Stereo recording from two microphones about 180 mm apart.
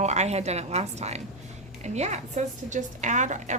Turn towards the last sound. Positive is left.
turn(degrees=-40)  # may be behind; listen again after turning